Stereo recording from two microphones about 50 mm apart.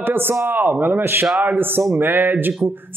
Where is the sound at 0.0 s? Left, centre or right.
Right.